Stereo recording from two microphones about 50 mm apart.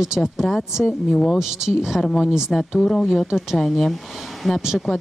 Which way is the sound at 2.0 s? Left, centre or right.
Centre.